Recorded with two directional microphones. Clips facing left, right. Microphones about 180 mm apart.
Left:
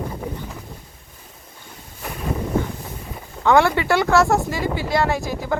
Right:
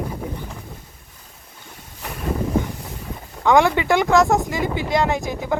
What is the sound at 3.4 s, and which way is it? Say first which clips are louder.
Speech: even; 15° right (ahead or behind).